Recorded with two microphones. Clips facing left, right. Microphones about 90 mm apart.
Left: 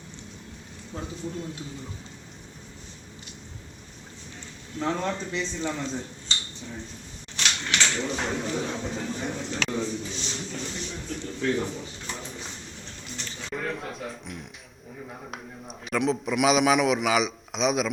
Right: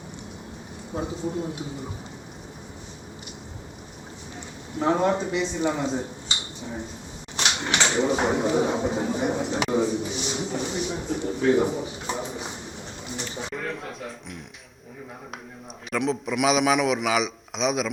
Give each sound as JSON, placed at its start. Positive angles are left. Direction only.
{"t": 0.9, "sound": "speech", "side_deg": -20}
{"t": 4.8, "sound": "speech", "side_deg": -20}
{"t": 7.3, "sound": "a sound", "side_deg": -20}
{"t": 13.1, "sound": "bird", "side_deg": -20}
{"t": 13.5, "sound": "music", "side_deg": 0}
{"t": 15.9, "sound": "a man's voice", "side_deg": 0}